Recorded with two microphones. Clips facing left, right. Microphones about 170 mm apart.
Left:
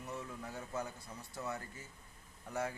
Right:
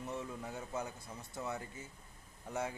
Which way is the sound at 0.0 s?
20° right (ahead or behind).